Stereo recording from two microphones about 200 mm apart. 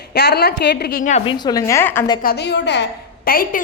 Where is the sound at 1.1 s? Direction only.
25° left (ahead or behind).